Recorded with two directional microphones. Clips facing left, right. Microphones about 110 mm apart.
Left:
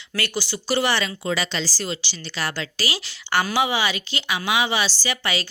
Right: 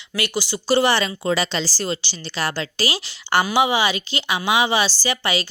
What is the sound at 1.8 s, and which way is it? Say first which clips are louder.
A woman's voice: right 3 dB; 40° right (ahead or behind).